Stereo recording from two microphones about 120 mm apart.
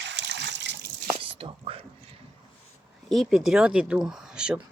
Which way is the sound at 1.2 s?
50° right (ahead or behind).